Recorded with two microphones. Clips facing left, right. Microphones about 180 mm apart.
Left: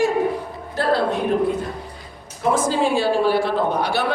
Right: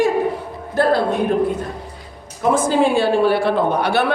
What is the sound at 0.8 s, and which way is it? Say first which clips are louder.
Speech: right 5 dB; 50° right (ahead or behind).